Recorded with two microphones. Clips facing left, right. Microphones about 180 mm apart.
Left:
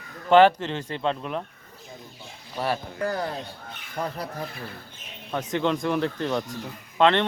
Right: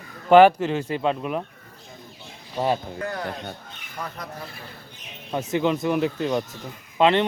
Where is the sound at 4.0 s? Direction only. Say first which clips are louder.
Left 4 dB; 30° left (ahead or behind).